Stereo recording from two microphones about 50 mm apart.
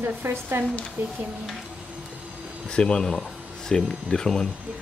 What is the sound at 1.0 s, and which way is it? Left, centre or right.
Speech, right.